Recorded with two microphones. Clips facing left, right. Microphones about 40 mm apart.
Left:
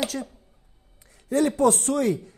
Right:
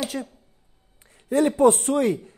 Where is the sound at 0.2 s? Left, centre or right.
Centre.